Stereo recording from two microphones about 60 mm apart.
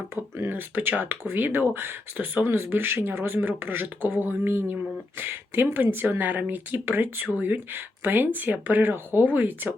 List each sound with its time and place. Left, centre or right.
0.3 s speech: right